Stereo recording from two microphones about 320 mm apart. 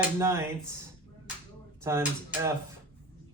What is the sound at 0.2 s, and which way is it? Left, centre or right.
Speech, centre.